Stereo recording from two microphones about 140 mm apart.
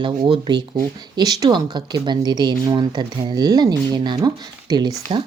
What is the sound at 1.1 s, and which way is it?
Speech, 25° right (ahead or behind).